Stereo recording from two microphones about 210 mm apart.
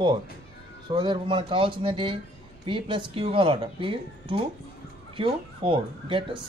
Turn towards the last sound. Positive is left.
turn(degrees=-25)  # may be behind; listen again after turning